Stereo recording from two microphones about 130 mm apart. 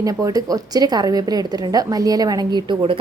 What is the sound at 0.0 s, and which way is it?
A woman's voice, 25° right (ahead or behind).